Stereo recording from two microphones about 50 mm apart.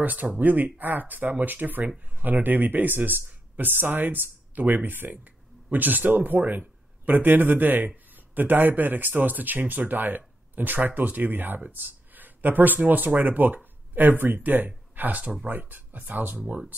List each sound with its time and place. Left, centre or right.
0.0 s a man's voice: right